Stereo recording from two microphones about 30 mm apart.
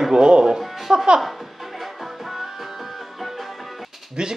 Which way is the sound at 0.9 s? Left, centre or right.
Right.